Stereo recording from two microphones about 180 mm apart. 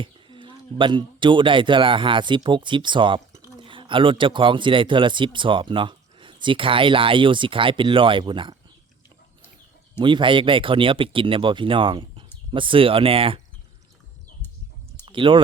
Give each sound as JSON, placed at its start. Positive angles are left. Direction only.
{"t": 0.0, "sound": "speech", "side_deg": -25}
{"t": 10.0, "sound": "speech", "side_deg": -25}
{"t": 15.0, "sound": "a sound", "side_deg": -30}